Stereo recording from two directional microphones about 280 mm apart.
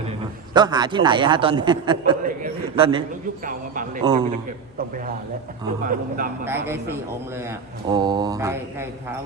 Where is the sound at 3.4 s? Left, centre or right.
Right.